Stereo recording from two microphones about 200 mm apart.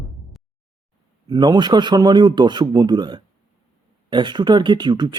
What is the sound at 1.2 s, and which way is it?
A man's voice, 20° right (ahead or behind).